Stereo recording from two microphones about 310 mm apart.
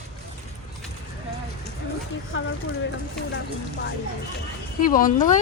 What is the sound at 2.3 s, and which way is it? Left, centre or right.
Speech, left.